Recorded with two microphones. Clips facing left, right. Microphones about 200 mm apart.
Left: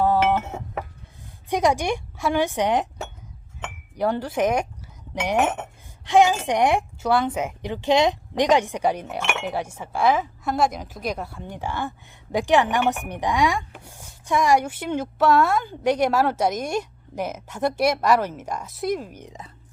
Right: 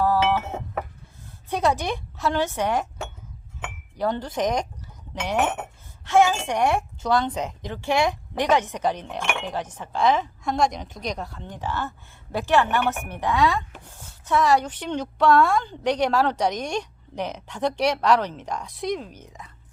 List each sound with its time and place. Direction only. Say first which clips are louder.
1.5 s speech: left 2 dB; 15° left (ahead or behind)
3.9 s speech: left 2 dB; 10° left (ahead or behind)